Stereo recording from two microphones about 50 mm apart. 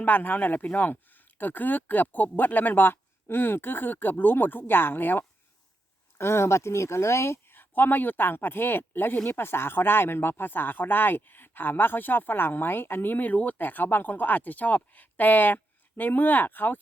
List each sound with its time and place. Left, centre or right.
0.0 s speech: left
6.1 s speech: left
7.5 s speech: left